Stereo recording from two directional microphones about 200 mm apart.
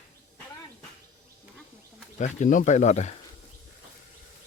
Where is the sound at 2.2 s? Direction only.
40° left (ahead or behind).